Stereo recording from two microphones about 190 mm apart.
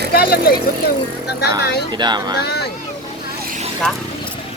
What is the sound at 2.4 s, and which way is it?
Speech, 60° left (ahead or behind).